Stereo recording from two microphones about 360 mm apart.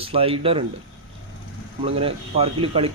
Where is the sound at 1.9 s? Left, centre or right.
Centre.